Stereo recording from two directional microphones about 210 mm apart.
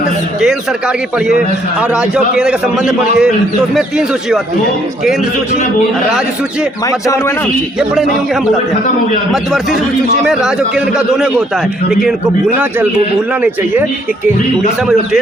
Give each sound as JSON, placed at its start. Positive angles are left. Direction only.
{"t": 1.8, "sound": "a man's voice", "side_deg": -5}
{"t": 6.8, "sound": "a man's voice", "side_deg": 15}
{"t": 9.3, "sound": "a man's voice", "side_deg": 0}